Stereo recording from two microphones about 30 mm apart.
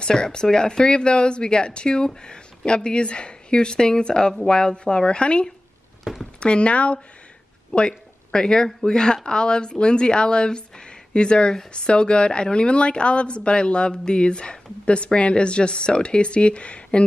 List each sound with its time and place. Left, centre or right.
0.0 s speech: left
7.7 s speech: left